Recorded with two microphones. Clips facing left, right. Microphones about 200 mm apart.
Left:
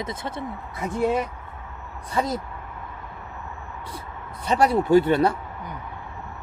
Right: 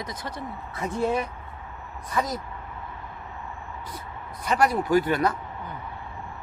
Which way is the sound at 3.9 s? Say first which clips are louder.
Left 1 dB; 30° left (ahead or behind).